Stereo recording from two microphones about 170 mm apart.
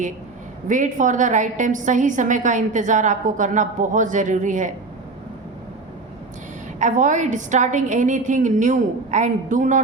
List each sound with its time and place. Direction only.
0.7 s a woman's voice: 45° right (ahead or behind)
6.7 s a woman's voice: 45° right (ahead or behind)